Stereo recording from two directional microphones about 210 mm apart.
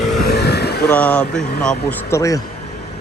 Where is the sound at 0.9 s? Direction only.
5° left (ahead or behind).